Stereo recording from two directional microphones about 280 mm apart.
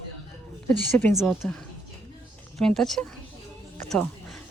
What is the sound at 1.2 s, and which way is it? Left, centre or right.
Speech, centre.